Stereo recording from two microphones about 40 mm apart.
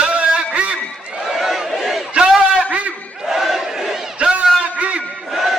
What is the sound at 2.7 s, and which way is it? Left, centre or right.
Crowd, right.